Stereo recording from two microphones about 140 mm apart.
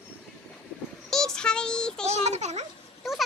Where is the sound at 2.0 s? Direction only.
50° right (ahead or behind).